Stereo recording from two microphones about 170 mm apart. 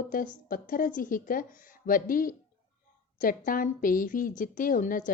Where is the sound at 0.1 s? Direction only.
55° left (ahead or behind).